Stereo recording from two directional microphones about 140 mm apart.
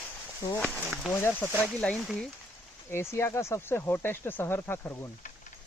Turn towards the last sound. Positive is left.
turn(degrees=15)  # may be behind; listen again after turning